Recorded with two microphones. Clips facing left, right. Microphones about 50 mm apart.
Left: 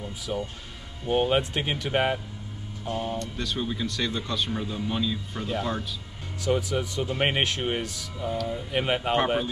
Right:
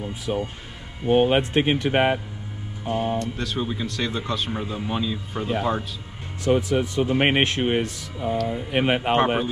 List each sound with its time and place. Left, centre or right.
0.0 s speech: right
3.3 s speech: centre